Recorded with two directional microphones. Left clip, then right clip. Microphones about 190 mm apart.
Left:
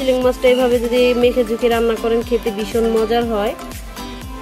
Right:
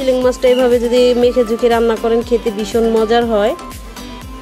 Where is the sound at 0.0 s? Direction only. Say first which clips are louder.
Right 2 dB; 20° right (ahead or behind).